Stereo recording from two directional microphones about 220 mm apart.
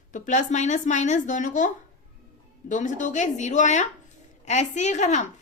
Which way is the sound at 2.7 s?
35° left (ahead or behind).